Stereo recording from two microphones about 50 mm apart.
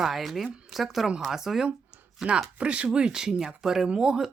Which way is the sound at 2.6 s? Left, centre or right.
Right.